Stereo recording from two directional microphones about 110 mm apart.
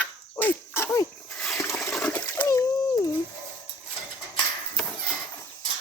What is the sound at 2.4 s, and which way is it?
Splash, 30° left (ahead or behind).